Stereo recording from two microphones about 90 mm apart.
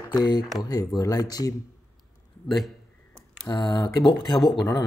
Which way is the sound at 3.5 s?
60° left (ahead or behind).